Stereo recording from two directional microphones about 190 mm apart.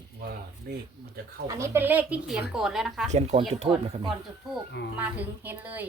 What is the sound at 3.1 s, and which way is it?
Speech, 35° right (ahead or behind).